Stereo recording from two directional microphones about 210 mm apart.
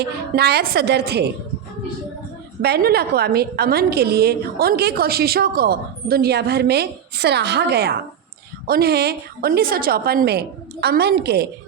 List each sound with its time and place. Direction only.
0.0 s a woman's voice: 50° right (ahead or behind)
2.6 s a woman's voice: 50° right (ahead or behind)